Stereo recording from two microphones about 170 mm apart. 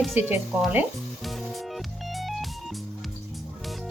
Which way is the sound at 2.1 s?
Centre (ahead or behind).